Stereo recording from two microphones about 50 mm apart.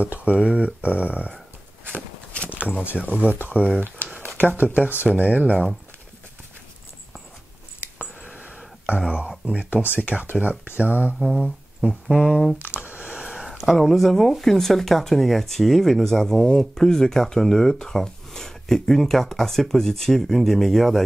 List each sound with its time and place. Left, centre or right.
0.0 s speech: right
2.0 s walk: left
2.8 s speech: right
7.8 s a sound: right
9.5 s speech: right
11.1 s speech: centre
12.5 s a sound: right
13.2 s speech: centre